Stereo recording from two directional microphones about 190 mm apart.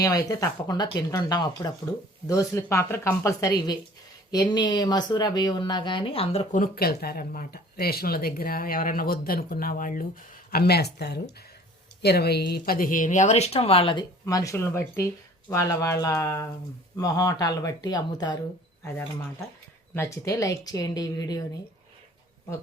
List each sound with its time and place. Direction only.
0.0 s speech: 20° left (ahead or behind)
6.6 s speech: 50° left (ahead or behind); by 18.3 s 20° left (ahead or behind)
19.9 s speech: 15° left (ahead or behind)